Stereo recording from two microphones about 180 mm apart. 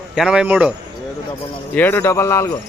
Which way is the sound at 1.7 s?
10° left (ahead or behind).